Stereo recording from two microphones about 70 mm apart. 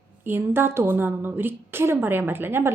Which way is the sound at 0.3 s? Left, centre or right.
Right.